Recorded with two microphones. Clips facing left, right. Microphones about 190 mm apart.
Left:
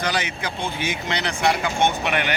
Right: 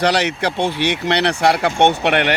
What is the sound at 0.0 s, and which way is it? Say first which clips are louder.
Speech: right 8 dB; 70° right (ahead or behind).